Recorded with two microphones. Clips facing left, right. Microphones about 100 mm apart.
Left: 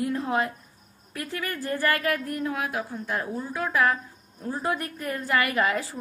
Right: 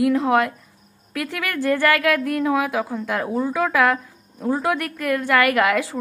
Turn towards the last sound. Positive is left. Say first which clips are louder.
# right 6 dB
turn(degrees=-85)